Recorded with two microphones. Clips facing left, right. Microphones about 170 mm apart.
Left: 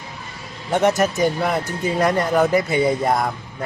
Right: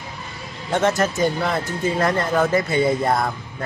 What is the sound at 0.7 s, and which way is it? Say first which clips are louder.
A man's voice: left 2 dB; 15° left (ahead or behind).